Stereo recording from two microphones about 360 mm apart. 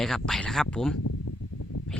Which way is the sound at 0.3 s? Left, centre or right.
Centre.